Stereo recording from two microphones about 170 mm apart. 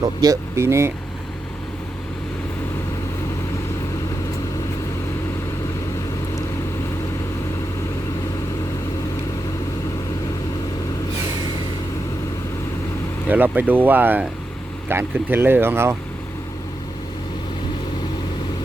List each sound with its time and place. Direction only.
0.2 s speech: 20° right (ahead or behind)
13.3 s speech: 10° right (ahead or behind)